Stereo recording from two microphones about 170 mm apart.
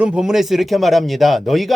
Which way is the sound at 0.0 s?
5° right (ahead or behind).